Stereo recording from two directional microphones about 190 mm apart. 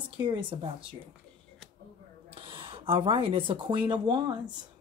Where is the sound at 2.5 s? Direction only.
30° right (ahead or behind).